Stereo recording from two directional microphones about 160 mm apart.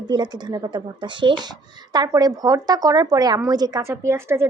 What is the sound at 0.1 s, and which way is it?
Speech, 25° right (ahead or behind).